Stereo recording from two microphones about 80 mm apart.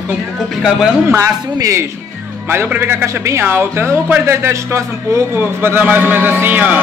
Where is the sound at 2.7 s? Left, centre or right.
Right.